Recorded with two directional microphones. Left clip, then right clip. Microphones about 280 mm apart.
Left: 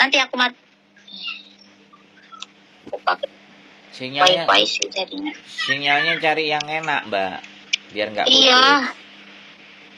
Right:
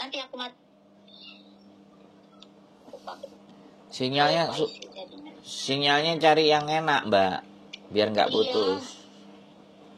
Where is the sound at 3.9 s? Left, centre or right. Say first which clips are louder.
Left 6 dB; right.